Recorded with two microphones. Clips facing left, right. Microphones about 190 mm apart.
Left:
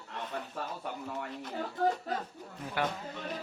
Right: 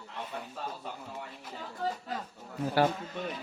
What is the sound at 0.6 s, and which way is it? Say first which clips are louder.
Speech: right 1 dB; 60° left (ahead or behind).